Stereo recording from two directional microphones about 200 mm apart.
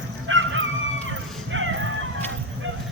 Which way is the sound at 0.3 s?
75° right (ahead or behind).